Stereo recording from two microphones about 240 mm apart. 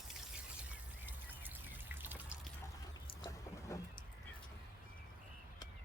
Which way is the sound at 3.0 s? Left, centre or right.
Centre.